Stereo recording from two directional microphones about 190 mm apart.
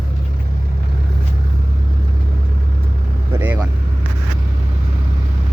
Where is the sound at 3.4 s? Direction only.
10° right (ahead or behind).